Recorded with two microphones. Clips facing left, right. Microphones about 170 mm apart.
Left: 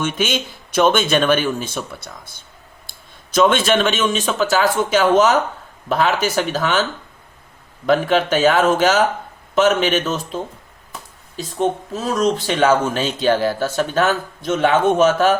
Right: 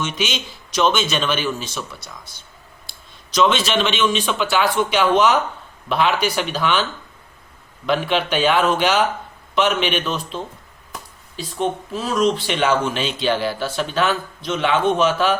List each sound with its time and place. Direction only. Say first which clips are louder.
0.0 s speech: left 4 dB; 50° left (ahead or behind)
3.5 s speech: left 3 dB; 50° left (ahead or behind)
7.9 s speech: left 4 dB; 45° left (ahead or behind)